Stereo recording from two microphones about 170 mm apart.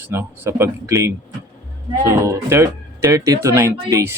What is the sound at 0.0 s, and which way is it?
Speech, 15° right (ahead or behind).